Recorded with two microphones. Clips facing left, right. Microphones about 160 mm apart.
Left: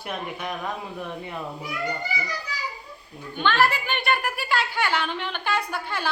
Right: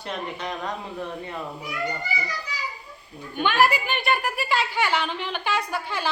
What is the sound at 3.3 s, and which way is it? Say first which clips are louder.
A woman's voice: right 1 dB; 10° right (ahead or behind).